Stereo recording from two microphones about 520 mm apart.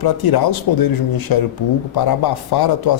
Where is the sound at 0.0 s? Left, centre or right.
Left.